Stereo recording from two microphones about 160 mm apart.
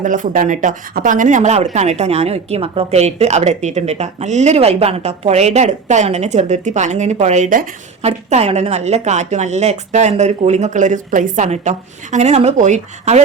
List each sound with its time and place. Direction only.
0.0 s speech: 55° right (ahead or behind)